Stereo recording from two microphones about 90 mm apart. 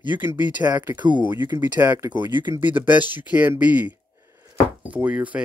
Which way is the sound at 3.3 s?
20° right (ahead or behind).